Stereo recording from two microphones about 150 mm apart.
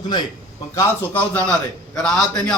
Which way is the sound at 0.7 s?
10° left (ahead or behind).